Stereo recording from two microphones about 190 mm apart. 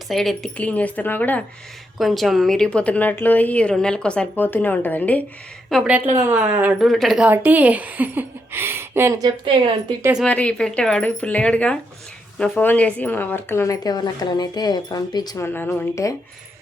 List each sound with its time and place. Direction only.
0.1 s speech: centre (ahead or behind)
5.6 s a woman's voice: 5° right (ahead or behind)
6.8 s a woman's voice: centre (ahead or behind); by 9.7 s 25° right (ahead or behind)
10.0 s a woman's voice: 5° right (ahead or behind)
10.2 s speech: 5° left (ahead or behind)